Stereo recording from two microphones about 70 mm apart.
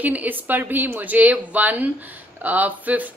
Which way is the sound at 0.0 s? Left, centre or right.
Right.